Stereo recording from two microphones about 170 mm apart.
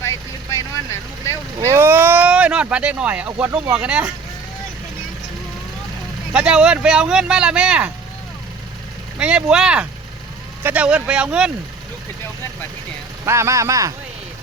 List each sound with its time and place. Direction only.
0.0 s vehicle: 20° left (ahead or behind)
1.5 s speech: 15° right (ahead or behind)
6.3 s speech: 5° right (ahead or behind)
9.1 s speech: 5° right (ahead or behind)
13.2 s speech: 15° right (ahead or behind)